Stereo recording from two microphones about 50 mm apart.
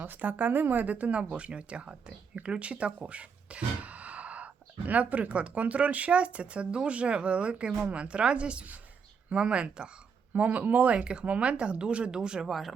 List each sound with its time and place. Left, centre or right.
0.0 s speech: right
10.3 s speech: right
10.9 s speech: right
12.5 s speech: centre